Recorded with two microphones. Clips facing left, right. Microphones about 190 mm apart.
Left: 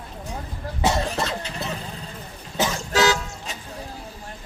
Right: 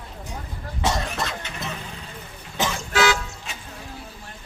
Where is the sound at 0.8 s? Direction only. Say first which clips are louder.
Left 3 dB; 30° left (ahead or behind).